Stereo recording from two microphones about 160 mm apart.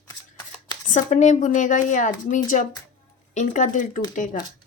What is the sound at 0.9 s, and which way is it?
Speech, 50° left (ahead or behind).